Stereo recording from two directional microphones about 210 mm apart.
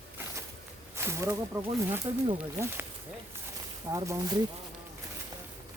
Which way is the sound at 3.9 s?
15° right (ahead or behind).